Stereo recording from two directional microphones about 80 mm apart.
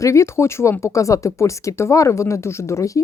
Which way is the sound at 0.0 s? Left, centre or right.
Left.